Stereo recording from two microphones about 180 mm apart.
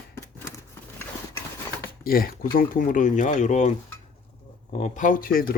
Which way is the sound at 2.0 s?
55° left (ahead or behind).